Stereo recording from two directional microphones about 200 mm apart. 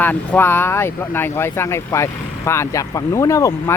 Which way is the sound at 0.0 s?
10° left (ahead or behind).